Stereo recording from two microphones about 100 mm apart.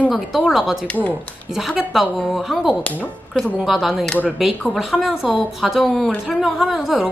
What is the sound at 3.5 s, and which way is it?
A woman's voice, centre (ahead or behind).